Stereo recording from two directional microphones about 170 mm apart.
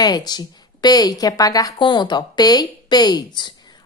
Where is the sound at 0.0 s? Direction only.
25° left (ahead or behind).